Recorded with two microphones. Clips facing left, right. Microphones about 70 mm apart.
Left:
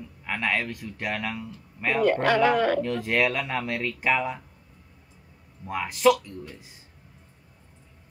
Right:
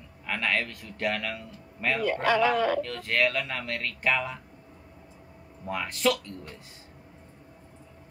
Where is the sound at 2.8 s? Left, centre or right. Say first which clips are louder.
Left 3 dB; centre.